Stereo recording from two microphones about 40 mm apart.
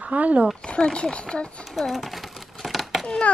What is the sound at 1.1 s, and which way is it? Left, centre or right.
Speech, left.